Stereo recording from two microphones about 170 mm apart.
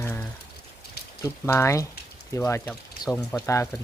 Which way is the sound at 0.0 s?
15° left (ahead or behind).